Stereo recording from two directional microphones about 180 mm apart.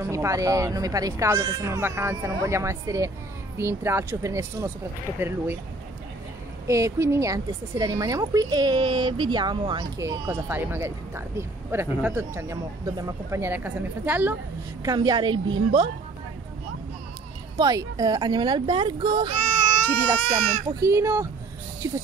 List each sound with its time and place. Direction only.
0.0 s a woman's voice: 15° right (ahead or behind)
6.7 s a woman's voice: 15° right (ahead or behind)
14.8 s speech: 20° right (ahead or behind)
17.6 s speech: 20° right (ahead or behind)
20.8 s a woman's voice: 15° right (ahead or behind)